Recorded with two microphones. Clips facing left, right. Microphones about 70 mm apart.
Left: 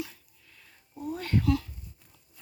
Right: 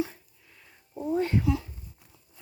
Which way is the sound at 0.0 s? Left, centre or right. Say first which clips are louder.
Right 7 dB; right.